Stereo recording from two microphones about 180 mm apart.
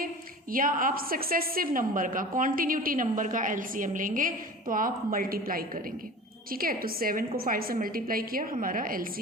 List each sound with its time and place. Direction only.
0.5 s a woman's voice: 50° right (ahead or behind)